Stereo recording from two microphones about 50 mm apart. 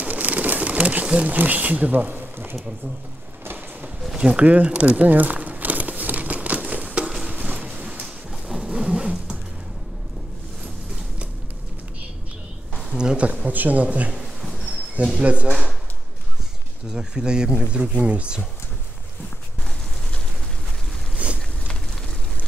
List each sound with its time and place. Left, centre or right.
0.0 s pigeon: right
4.2 s crumpling: right
7.2 s a sound: right
8.5 s zipper: centre
12.9 s a sound: centre
13.5 s a man's voice: right
15.2 s a man's voice: right
16.9 s speech: centre
21.2 s boat: right